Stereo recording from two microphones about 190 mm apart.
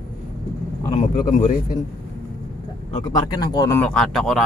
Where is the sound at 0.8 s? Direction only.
30° left (ahead or behind).